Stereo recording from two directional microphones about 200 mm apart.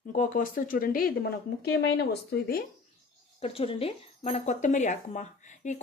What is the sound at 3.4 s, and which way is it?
Speech, 30° left (ahead or behind).